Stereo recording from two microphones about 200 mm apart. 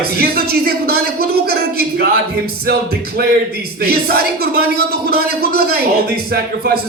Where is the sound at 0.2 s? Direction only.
50° right (ahead or behind).